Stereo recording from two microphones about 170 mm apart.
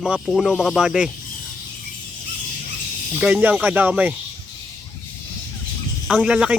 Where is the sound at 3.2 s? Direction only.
5° right (ahead or behind).